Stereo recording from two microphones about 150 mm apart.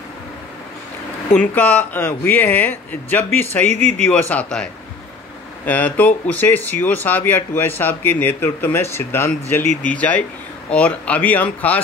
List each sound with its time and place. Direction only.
1.3 s speech: 10° left (ahead or behind)
5.7 s speech: 10° left (ahead or behind)